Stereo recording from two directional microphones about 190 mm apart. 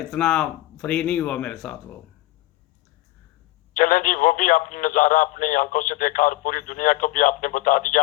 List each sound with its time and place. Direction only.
0.0 s speech: 5° left (ahead or behind)
3.8 s speech: 45° left (ahead or behind)